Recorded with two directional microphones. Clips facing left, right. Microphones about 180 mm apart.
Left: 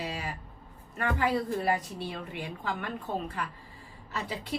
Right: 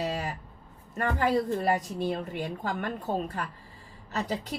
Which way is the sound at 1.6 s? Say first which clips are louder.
Right 3 dB; 45° right (ahead or behind).